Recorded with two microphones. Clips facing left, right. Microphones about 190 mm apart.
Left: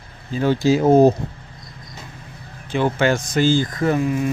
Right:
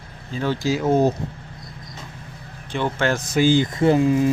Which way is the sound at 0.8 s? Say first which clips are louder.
Left 6 dB; 35° left (ahead or behind).